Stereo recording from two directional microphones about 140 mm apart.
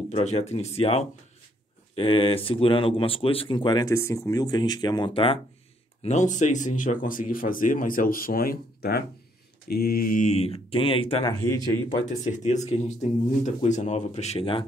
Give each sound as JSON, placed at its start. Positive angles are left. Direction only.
{"t": 0.1, "sound": "speech", "side_deg": 50}
{"t": 3.9, "sound": "speech", "side_deg": 20}
{"t": 6.0, "sound": "speech", "side_deg": 60}
{"t": 9.8, "sound": "speech", "side_deg": 90}
{"t": 11.2, "sound": "speech", "side_deg": 25}
{"t": 12.1, "sound": "speech", "side_deg": 55}